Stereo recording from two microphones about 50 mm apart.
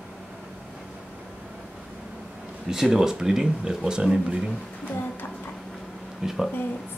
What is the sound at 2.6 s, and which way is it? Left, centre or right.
Speech, centre.